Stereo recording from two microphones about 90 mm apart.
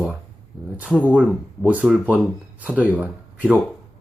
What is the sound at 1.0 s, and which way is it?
Speech, 15° right (ahead or behind).